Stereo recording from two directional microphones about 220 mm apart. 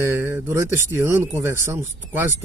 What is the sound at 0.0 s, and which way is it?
Speech, 10° right (ahead or behind).